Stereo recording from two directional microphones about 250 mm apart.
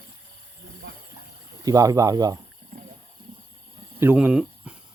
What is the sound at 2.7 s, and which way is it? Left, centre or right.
Wild animals, right.